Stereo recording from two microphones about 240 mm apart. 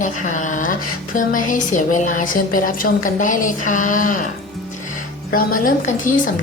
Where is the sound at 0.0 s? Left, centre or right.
Left.